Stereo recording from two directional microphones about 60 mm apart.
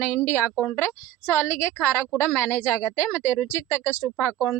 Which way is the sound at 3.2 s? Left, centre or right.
Left.